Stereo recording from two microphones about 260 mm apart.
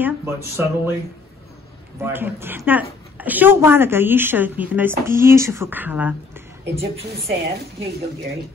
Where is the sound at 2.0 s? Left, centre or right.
Centre.